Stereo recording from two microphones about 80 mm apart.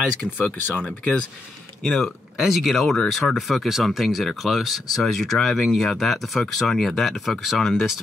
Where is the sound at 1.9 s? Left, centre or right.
Centre.